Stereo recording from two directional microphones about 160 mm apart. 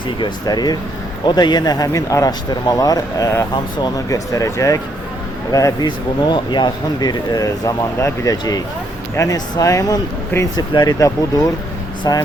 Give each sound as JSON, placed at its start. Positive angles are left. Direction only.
{"t": 0.2, "sound": "speech", "side_deg": 25}